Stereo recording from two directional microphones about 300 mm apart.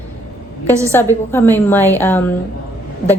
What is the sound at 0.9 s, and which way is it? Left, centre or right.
A woman's voice, centre.